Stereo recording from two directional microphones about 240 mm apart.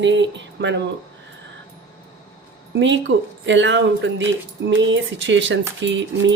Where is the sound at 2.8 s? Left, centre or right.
Right.